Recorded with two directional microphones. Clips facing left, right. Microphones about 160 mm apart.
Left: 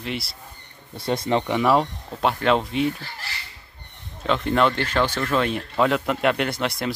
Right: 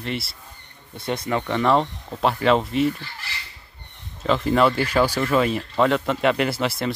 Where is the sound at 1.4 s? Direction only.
10° left (ahead or behind).